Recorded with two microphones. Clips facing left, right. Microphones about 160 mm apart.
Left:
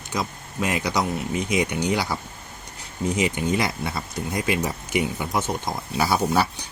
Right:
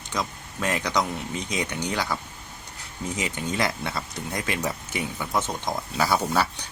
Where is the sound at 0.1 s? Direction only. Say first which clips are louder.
Left 2 dB; 10° left (ahead or behind).